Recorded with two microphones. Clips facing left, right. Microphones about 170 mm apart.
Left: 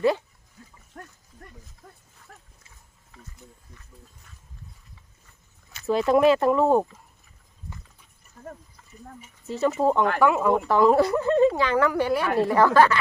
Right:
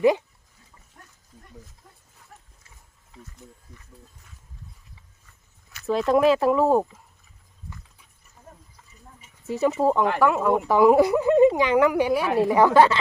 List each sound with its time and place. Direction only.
0.9 s wild animals: 90° left
2.3 s dog: 75° left (ahead or behind)
5.8 s speech: centre (ahead or behind)
9.5 s speech: 10° right (ahead or behind)
10.7 s a woman's voice: 10° right (ahead or behind)